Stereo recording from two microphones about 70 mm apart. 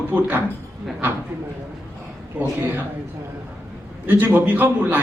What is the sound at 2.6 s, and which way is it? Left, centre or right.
Speech, right.